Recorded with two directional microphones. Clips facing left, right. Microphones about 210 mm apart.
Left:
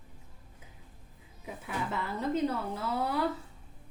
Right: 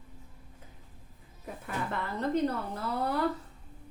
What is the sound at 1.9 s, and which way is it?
Speech, 5° left (ahead or behind).